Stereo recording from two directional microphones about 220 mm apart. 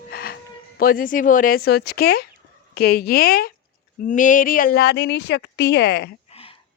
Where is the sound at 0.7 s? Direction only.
40° left (ahead or behind).